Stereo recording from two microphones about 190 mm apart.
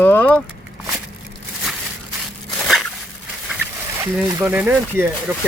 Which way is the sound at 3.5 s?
10° right (ahead or behind).